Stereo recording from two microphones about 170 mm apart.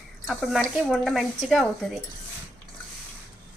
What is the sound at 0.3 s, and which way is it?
Speech, centre (ahead or behind).